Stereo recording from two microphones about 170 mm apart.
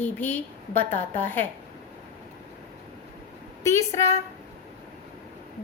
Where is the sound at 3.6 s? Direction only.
15° left (ahead or behind).